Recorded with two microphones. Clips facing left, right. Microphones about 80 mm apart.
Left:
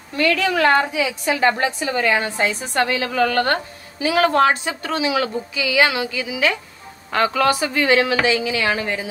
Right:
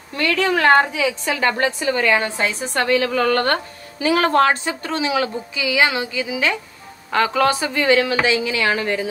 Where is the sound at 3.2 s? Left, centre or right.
Right.